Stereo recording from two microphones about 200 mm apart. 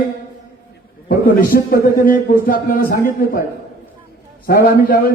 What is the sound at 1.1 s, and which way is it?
A man's voice, 45° left (ahead or behind).